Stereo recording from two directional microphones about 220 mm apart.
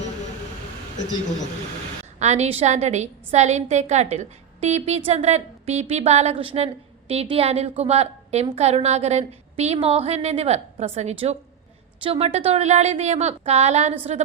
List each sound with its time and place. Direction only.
2.1 s a woman's voice: 30° right (ahead or behind)